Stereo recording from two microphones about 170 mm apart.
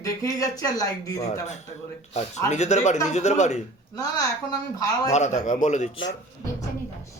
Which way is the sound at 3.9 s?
20° left (ahead or behind).